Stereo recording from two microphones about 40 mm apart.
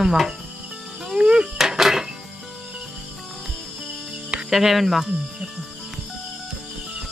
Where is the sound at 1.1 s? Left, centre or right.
Right.